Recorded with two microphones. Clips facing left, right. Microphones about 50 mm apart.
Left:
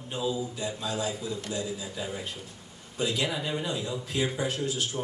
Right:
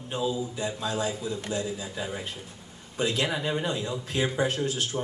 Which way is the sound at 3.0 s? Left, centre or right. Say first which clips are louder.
Right 2 dB; right.